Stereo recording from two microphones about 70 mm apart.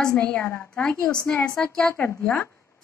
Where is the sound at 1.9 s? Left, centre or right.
Left.